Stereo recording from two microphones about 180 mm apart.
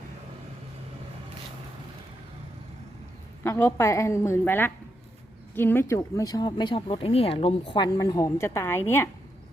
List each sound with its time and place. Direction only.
3.4 s a woman's voice: 15° left (ahead or behind)